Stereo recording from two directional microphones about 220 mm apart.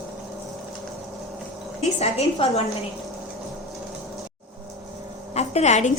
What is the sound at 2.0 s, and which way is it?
Speech, 30° left (ahead or behind).